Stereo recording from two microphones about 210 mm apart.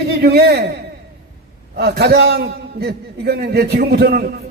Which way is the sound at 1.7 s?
50° right (ahead or behind).